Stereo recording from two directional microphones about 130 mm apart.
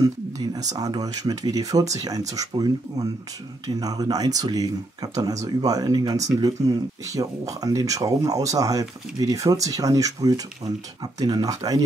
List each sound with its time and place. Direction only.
0.0 s speech: 30° right (ahead or behind)